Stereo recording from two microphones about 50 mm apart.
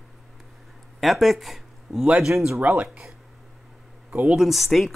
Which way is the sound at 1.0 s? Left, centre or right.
Centre.